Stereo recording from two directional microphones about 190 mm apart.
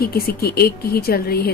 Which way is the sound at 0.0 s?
50° left (ahead or behind).